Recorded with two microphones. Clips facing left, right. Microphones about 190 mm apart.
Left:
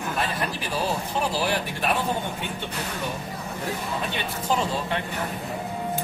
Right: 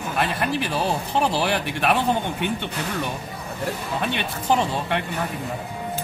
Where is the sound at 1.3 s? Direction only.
65° right (ahead or behind).